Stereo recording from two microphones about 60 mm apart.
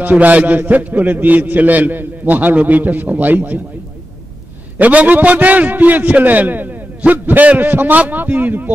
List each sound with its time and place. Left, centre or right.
0.0 s a man's voice: right
4.7 s a man's voice: right